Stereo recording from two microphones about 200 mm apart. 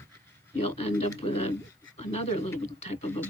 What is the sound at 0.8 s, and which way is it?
Speech, 30° left (ahead or behind).